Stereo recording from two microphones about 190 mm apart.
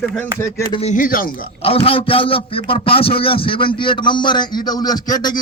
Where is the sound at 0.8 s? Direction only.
40° left (ahead or behind).